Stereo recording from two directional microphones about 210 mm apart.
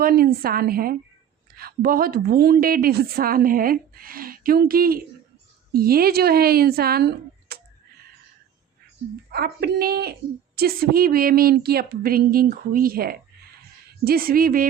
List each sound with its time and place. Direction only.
0.0 s a woman's voice: 45° right (ahead or behind)
9.3 s a woman's voice: 50° right (ahead or behind)